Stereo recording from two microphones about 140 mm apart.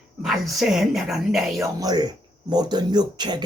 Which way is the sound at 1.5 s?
25° right (ahead or behind).